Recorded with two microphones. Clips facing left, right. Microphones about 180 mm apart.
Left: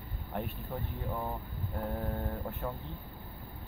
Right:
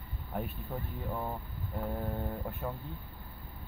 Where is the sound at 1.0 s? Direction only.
5° left (ahead or behind).